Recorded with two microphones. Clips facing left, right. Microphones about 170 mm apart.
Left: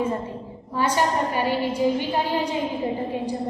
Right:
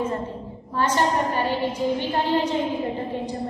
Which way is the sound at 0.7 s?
10° left (ahead or behind).